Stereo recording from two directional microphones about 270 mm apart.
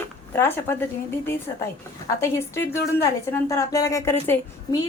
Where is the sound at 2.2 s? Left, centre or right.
Centre.